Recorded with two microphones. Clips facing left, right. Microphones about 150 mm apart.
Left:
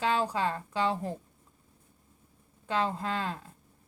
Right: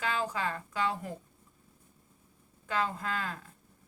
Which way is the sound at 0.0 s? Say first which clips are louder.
Left 4 dB; 30° left (ahead or behind).